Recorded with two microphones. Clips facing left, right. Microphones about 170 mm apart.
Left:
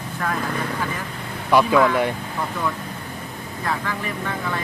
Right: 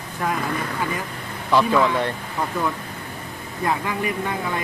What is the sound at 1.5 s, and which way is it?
Speech, 10° left (ahead or behind).